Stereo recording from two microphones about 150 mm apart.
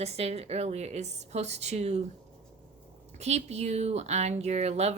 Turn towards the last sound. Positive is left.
turn(degrees=-45)  # may be behind; listen again after turning